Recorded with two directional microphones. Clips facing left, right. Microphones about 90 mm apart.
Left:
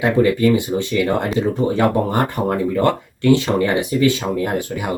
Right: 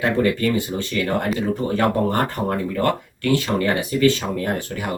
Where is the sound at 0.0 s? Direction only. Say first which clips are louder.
Left 4 dB; 15° left (ahead or behind).